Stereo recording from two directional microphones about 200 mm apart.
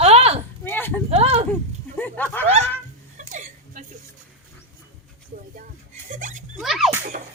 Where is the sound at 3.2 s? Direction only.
40° right (ahead or behind).